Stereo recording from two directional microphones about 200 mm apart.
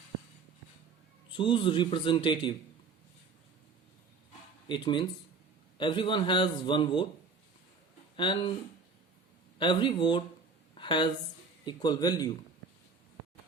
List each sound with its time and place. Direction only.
1.3 s a man's voice: 25° left (ahead or behind)
4.7 s a man's voice: 25° left (ahead or behind)
8.1 s speech: 25° left (ahead or behind)
9.6 s a man's voice: 25° left (ahead or behind)
10.8 s a sound: 25° left (ahead or behind)
11.6 s a man's voice: 20° left (ahead or behind)